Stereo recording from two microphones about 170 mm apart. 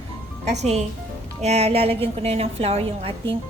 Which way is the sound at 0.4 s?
40° right (ahead or behind).